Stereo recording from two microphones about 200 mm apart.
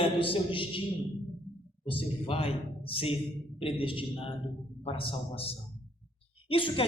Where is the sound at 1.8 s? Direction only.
25° left (ahead or behind).